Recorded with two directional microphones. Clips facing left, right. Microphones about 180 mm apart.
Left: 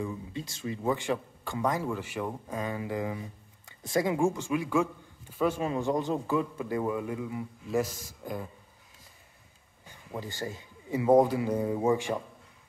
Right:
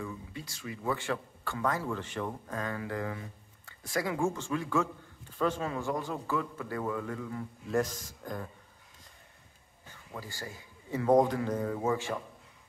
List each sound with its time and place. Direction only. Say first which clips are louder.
0.0 s speech: left 5 dB; 20° left (ahead or behind)
5.7 s speech: left 5 dB; 20° left (ahead or behind)
9.8 s a man's voice: left 5 dB; 20° left (ahead or behind)